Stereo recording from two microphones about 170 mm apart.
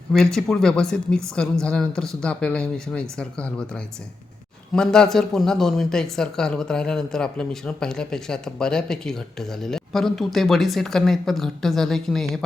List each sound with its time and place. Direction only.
0.1 s speech: 5° left (ahead or behind)
4.7 s speech: 5° left (ahead or behind)